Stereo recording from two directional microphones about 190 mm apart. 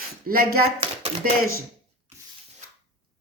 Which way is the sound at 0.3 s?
50° right (ahead or behind).